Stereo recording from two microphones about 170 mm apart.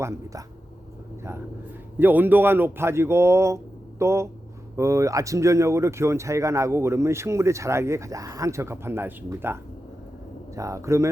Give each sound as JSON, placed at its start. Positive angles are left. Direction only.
{"t": 2.0, "sound": "speech", "side_deg": -10}